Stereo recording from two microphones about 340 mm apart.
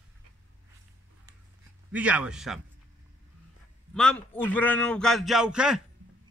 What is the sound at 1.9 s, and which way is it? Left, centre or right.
Speech, centre.